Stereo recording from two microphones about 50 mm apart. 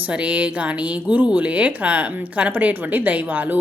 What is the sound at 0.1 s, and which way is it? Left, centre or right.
Speech, right.